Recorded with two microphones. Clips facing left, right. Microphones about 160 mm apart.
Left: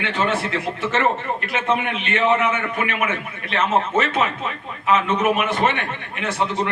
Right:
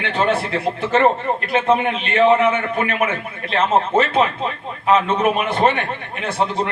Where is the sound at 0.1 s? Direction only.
30° right (ahead or behind).